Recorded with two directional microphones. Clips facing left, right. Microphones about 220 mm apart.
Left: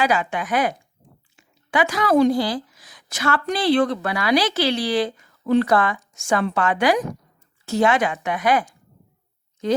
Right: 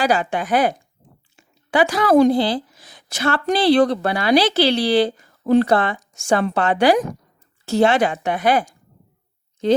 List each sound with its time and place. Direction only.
0.0 s a woman's voice: 30° right (ahead or behind)
2.3 s a woman's voice: 30° right (ahead or behind)